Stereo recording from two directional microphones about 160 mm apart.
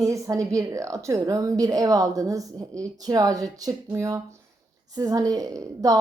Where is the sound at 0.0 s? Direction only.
20° right (ahead or behind).